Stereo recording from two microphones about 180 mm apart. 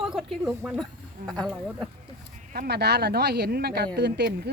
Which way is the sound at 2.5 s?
60° right (ahead or behind).